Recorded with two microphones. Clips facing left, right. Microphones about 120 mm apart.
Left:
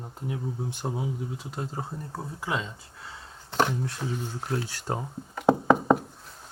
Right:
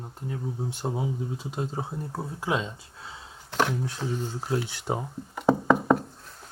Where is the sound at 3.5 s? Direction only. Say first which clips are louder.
Even; centre (ahead or behind).